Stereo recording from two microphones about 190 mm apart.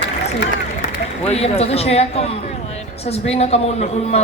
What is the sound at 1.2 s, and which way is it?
A man's voice, 35° left (ahead or behind).